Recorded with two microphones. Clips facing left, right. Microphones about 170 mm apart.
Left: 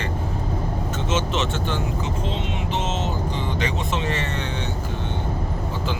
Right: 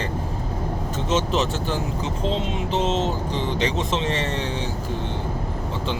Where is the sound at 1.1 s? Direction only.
35° right (ahead or behind).